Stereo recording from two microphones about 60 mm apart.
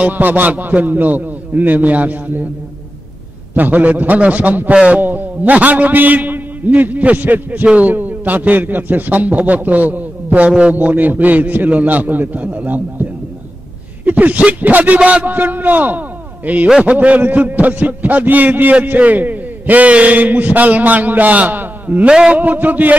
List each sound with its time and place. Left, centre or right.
0.0 s a man's voice: right
3.5 s a man's voice: right
15.0 s a man's voice: centre
15.2 s a man's voice: right
22.1 s a man's voice: centre
22.4 s a man's voice: right